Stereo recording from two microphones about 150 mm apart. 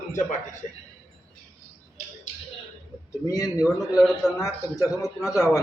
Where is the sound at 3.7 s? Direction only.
Centre (ahead or behind).